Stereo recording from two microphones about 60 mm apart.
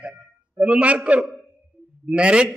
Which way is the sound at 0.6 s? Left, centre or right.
Right.